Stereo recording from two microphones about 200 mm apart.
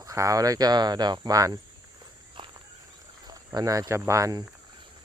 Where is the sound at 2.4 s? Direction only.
25° right (ahead or behind).